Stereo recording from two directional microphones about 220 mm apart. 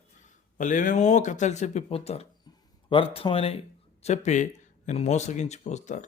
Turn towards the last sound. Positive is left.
turn(degrees=35)  # may be behind; listen again after turning